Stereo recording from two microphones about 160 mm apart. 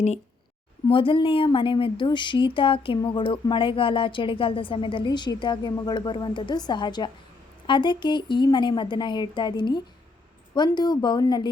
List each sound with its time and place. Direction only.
0.9 s a woman's voice: 35° left (ahead or behind)